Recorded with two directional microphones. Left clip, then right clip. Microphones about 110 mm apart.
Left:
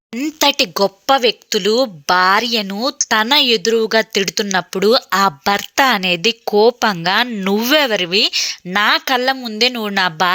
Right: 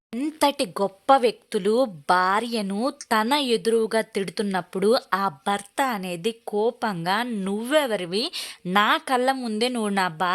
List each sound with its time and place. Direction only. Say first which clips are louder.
0.2 s a woman's voice: left 8 dB; 10° left (ahead or behind)
2.1 s speech: left 10 dB; 10° left (ahead or behind)
5.1 s a woman's voice: left 9 dB; 25° left (ahead or behind)
7.9 s speech: left 11 dB; 10° left (ahead or behind)